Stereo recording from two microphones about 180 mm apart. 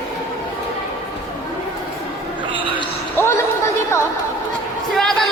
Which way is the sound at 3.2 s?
15° left (ahead or behind).